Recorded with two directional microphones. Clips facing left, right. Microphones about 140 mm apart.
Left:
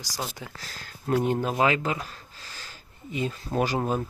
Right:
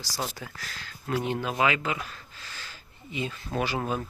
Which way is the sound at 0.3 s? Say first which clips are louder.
Even; 20° left (ahead or behind).